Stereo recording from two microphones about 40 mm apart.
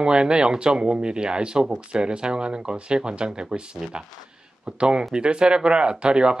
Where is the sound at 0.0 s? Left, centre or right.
Right.